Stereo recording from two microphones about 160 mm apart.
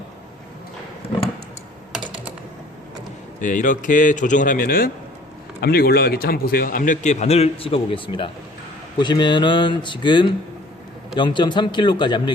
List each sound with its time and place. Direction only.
1.9 s computer keyboard: 5° right (ahead or behind)
3.4 s a man's voice: 55° left (ahead or behind)
5.5 s a man's voice: 75° left (ahead or behind); by 12.3 s 30° left (ahead or behind)